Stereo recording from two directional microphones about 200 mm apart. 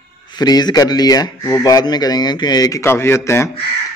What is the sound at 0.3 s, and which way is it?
Speech, 20° left (ahead or behind).